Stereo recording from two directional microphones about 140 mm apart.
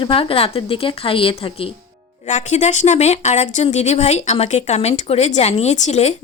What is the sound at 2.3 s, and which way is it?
Speech, 55° left (ahead or behind).